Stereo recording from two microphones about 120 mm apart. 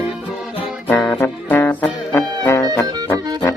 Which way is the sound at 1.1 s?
20° left (ahead or behind).